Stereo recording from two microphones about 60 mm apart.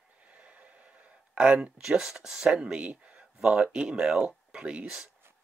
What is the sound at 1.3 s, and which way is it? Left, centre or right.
Speech, centre.